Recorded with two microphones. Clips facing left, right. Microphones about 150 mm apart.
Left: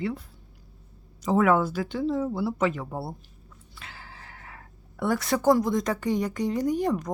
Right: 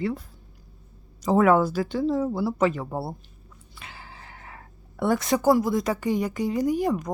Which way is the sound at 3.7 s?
15° right (ahead or behind).